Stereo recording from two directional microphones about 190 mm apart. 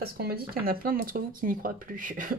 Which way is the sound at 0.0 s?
55° right (ahead or behind).